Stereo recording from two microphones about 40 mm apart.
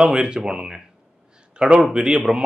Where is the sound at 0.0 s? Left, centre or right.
Right.